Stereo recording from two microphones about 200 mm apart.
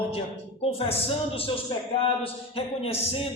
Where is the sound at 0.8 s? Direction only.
30° left (ahead or behind).